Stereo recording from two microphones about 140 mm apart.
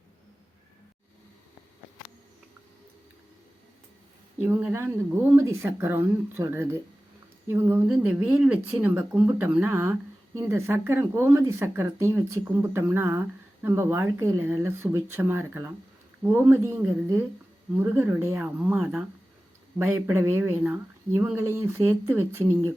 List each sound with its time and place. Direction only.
4.4 s speech: 15° right (ahead or behind)